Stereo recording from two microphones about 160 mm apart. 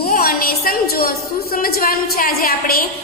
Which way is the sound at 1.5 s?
65° left (ahead or behind).